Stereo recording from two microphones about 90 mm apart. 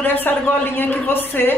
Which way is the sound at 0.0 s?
20° left (ahead or behind).